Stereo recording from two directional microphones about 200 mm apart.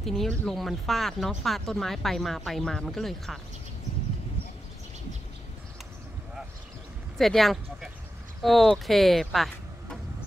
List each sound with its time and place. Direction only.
0.0 s speech: centre (ahead or behind)
7.2 s speech: centre (ahead or behind)